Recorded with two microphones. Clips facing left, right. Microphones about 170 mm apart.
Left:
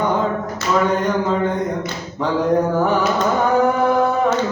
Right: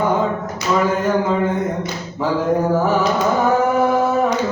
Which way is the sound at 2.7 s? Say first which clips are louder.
Right 1 dB; centre (ahead or behind).